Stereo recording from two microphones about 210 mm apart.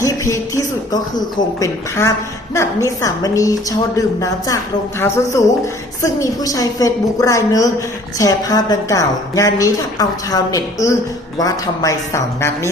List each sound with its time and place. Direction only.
0.0 s speech: 15° left (ahead or behind)